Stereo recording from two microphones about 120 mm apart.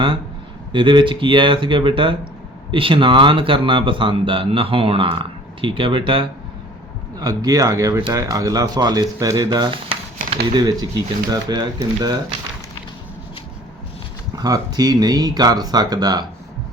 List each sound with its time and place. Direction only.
0.7 s speech: 40° right (ahead or behind)
7.2 s speech: 30° right (ahead or behind)
9.5 s a sound: 40° right (ahead or behind)
10.6 s speech: 35° right (ahead or behind)
14.3 s speech: 30° right (ahead or behind)